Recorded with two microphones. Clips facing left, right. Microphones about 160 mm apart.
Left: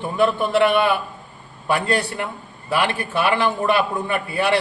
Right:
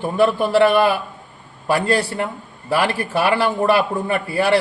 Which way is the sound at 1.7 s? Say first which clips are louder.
Right 3 dB; 35° right (ahead or behind).